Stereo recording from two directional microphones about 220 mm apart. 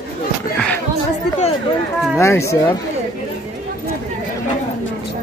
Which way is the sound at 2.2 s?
10° left (ahead or behind).